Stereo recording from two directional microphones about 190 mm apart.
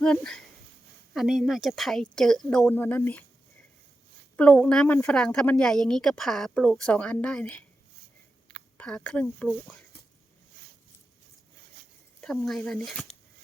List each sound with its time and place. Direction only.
0.0 s a woman's voice: 5° left (ahead or behind)
4.4 s a woman's voice: 5° left (ahead or behind)
8.8 s speech: 5° left (ahead or behind)
12.2 s a woman's voice: 5° left (ahead or behind)